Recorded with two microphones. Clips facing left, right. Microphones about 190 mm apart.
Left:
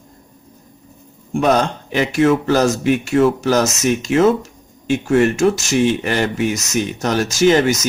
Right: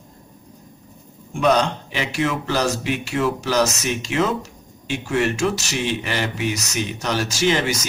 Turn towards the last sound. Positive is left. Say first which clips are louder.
# left 7 dB
turn(degrees=45)  # may be behind; listen again after turning